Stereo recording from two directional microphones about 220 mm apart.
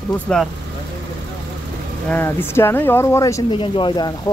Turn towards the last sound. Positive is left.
turn(degrees=20)  # may be behind; listen again after turning